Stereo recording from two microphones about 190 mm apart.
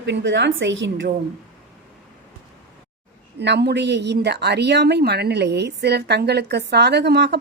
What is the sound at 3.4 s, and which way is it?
A woman's voice, 65° right (ahead or behind).